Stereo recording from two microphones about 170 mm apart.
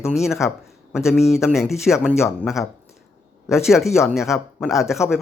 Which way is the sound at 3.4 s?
Centre (ahead or behind).